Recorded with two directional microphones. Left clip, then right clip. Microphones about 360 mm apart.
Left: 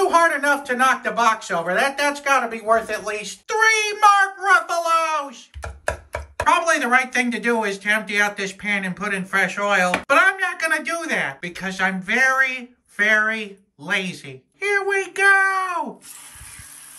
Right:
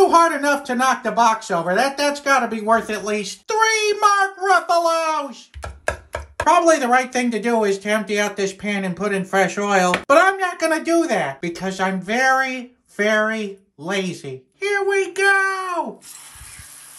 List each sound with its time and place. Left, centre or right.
0.1 s a sound: centre
0.7 s speech: centre
5.6 s speech: centre